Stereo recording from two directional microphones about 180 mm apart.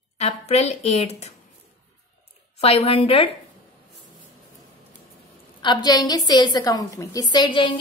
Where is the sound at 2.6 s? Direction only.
35° left (ahead or behind).